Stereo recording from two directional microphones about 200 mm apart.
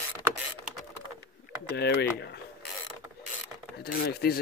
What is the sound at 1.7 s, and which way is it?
Speech, 55° left (ahead or behind).